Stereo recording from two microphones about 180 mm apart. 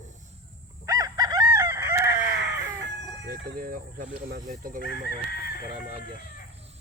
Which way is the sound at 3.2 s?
65° right (ahead or behind).